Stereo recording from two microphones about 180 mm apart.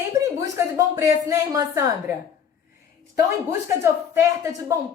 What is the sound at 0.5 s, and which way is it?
A woman's voice, 15° right (ahead or behind).